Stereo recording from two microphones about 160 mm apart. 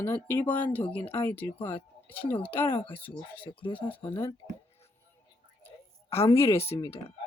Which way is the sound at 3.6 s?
30° left (ahead or behind).